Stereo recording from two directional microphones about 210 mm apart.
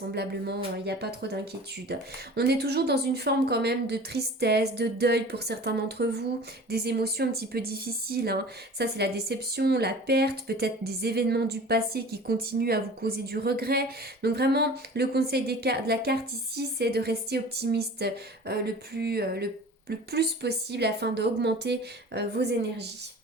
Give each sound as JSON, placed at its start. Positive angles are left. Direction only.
{"t": 0.1, "sound": "speech", "side_deg": -50}